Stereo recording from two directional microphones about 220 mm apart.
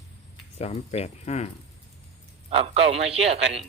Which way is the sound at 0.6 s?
30° left (ahead or behind).